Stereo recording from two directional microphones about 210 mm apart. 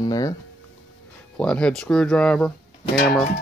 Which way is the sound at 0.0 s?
15° left (ahead or behind).